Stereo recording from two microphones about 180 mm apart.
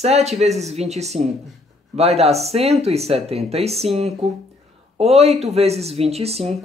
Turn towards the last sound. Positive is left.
turn(degrees=-35)  # may be behind; listen again after turning